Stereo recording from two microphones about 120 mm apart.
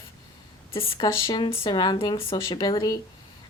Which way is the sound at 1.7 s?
35° left (ahead or behind).